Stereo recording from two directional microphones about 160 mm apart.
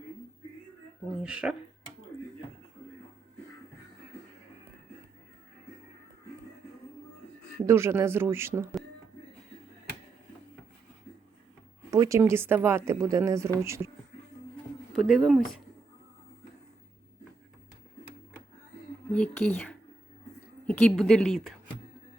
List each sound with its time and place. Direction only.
1.1 s a woman's voice: 5° right (ahead or behind)
7.7 s a woman's voice: 15° right (ahead or behind)
11.9 s a woman's voice: 20° right (ahead or behind)
14.9 s a woman's voice: 5° right (ahead or behind)
19.1 s a woman's voice: 10° left (ahead or behind)